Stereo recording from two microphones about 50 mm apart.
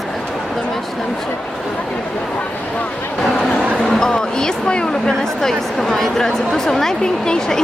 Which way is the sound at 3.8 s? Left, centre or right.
Centre.